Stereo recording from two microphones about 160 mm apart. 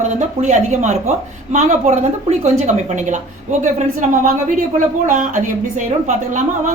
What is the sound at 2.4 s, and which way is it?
A woman's voice, 45° right (ahead or behind).